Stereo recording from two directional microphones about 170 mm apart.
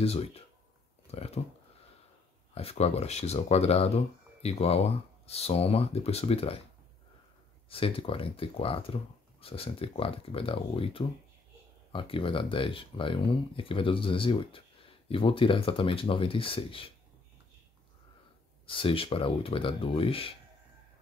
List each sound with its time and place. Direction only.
0.0 s speech: 35° left (ahead or behind)
2.5 s speech: 35° left (ahead or behind)
7.7 s speech: 35° left (ahead or behind)
18.7 s speech: 30° left (ahead or behind)